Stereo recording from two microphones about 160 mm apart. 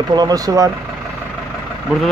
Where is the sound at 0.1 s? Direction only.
25° right (ahead or behind).